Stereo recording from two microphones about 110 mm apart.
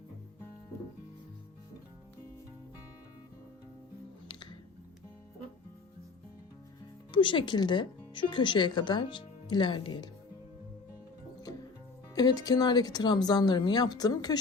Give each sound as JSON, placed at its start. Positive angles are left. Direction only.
{"t": 7.1, "sound": "speech", "side_deg": 50}
{"t": 12.1, "sound": "speech", "side_deg": 35}